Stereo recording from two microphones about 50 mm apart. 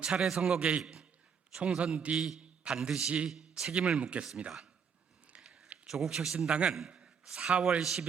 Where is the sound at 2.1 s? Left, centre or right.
Centre.